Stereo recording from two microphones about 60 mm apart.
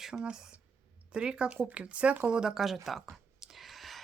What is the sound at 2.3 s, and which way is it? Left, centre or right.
Speech, centre.